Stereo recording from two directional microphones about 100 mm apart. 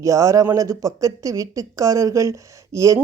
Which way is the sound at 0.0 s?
30° right (ahead or behind).